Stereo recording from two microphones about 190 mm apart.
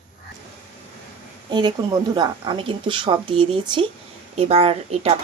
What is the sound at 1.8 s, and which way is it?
Speech, 20° right (ahead or behind).